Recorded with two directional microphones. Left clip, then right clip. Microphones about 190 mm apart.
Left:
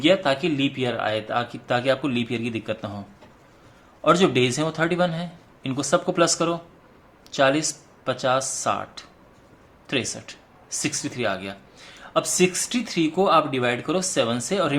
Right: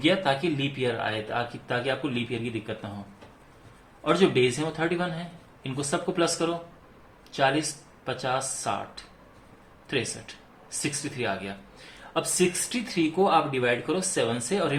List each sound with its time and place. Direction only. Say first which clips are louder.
0.0 s a man's voice: left 4 dB; 30° left (ahead or behind); by 2.9 s 50° left (ahead or behind)
4.0 s speech: left 4 dB; 50° left (ahead or behind)